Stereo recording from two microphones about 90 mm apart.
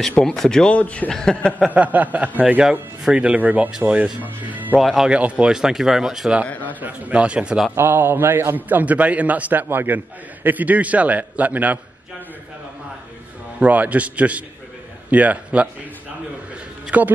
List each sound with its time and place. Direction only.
0.2 s a man's voice: 5° left (ahead or behind)
1.7 s speech: 20° right (ahead or behind)
4.7 s speech: centre (ahead or behind)
5.1 s speech: 15° right (ahead or behind)
7.7 s a man's voice: 25° right (ahead or behind)
13.6 s speech: 15° right (ahead or behind)
16.9 s speech: 15° right (ahead or behind)